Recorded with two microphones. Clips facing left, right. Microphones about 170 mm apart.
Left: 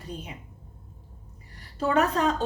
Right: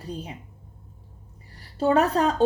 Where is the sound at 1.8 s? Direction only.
35° right (ahead or behind).